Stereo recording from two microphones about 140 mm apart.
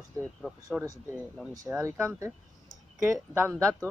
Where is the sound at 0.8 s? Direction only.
10° right (ahead or behind).